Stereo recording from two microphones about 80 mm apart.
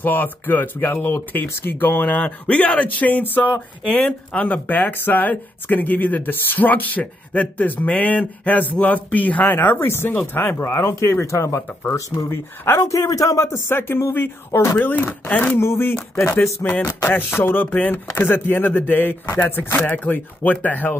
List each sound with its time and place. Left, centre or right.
0.0 s speech: left
3.8 s a man's voice: centre; by 14.8 s left
14.8 s speech: left
15.6 s speech: left